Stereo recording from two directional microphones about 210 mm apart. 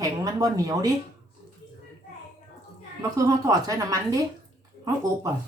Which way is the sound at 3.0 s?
15° right (ahead or behind).